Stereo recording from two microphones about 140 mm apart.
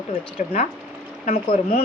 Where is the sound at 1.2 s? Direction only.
55° left (ahead or behind).